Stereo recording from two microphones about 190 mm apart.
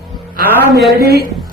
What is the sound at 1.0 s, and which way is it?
Speech, 55° right (ahead or behind).